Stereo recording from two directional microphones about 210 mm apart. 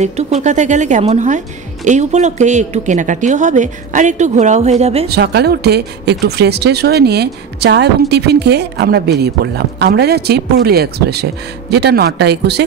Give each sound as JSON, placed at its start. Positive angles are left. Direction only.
{"t": 0.0, "sound": "a woman's voice", "side_deg": -30}
{"t": 5.0, "sound": "speech", "side_deg": -50}